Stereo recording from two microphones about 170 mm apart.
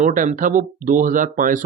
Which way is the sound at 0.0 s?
45° right (ahead or behind).